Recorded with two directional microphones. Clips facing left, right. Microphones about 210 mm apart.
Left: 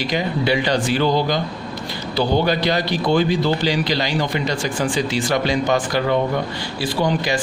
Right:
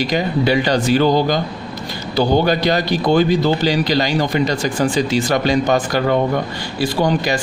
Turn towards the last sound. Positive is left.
turn(degrees=-40)  # may be behind; listen again after turning